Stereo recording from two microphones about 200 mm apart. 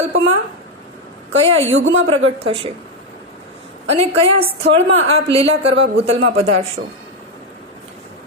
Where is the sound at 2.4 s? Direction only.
30° right (ahead or behind).